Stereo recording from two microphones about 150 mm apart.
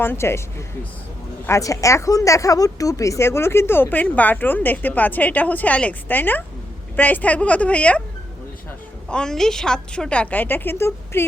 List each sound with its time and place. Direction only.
0.0 s speech: 15° left (ahead or behind)
1.5 s speech: 20° left (ahead or behind)
9.0 s speech: 5° left (ahead or behind)